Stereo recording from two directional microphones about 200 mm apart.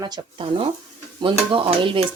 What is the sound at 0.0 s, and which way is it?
Speech, 25° right (ahead or behind).